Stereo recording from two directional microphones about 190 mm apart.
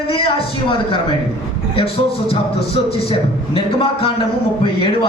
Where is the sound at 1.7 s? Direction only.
30° left (ahead or behind).